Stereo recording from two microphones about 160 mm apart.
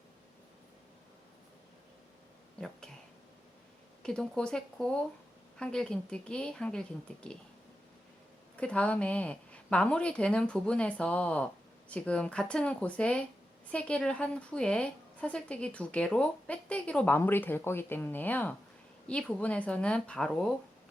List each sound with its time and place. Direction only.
4.0 s speech: 5° left (ahead or behind)
8.5 s a woman's voice: 5° left (ahead or behind)